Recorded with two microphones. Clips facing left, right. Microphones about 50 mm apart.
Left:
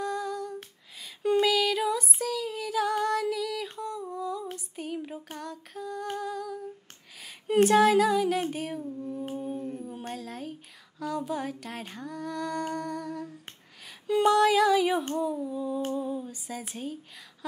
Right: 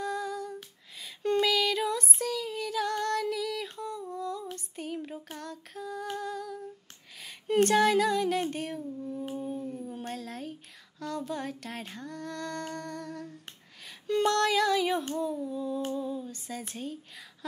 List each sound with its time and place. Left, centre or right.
0.0 s female singing: centre
0.9 s a sound: centre
1.3 s female singing: centre
7.2 s a sound: centre
8.8 s music: centre
9.3 s howl: centre
9.6 s howl: left
9.8 s speech: centre
13.8 s a sound: centre
15.1 s humming: centre
15.8 s a sound: left
16.3 s a woman's voice: centre